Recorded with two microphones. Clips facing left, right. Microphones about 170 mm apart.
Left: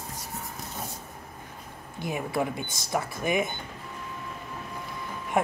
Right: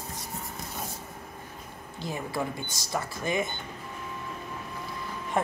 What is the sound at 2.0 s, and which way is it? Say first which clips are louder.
Speech: left 3 dB; 20° left (ahead or behind).